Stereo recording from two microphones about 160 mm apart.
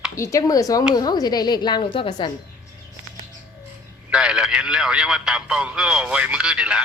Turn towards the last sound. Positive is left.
turn(degrees=-5)  # may be behind; listen again after turning